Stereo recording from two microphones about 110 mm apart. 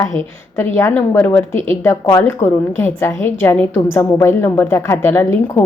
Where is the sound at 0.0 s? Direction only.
20° left (ahead or behind).